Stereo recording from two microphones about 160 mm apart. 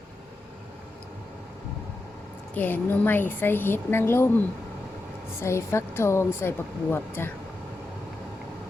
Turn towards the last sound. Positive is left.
turn(degrees=15)  # may be behind; listen again after turning